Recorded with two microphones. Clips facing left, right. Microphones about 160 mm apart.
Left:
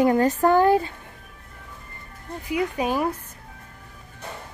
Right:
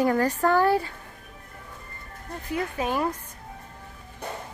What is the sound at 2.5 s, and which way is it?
Speech, 15° left (ahead or behind).